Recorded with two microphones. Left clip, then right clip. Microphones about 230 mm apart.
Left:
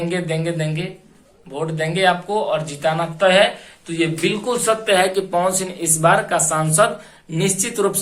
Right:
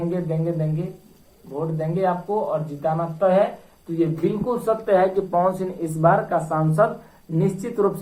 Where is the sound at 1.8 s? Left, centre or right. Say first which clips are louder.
Left 6 dB; left.